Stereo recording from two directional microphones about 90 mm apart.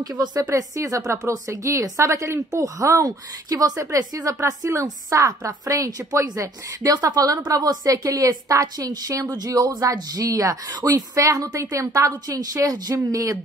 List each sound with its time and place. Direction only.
0.2 s a woman's voice: 40° right (ahead or behind)